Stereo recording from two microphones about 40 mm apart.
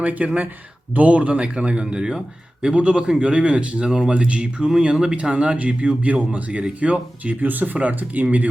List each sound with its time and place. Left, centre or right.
0.0 s a man's voice: right
3.8 s a man's voice: centre; by 7.3 s right
7.4 s speech: right